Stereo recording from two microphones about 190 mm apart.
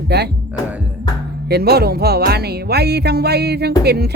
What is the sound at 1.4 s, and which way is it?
Speech, 55° right (ahead or behind).